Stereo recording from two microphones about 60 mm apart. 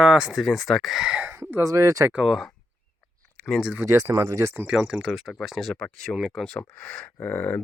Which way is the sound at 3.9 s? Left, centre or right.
Right.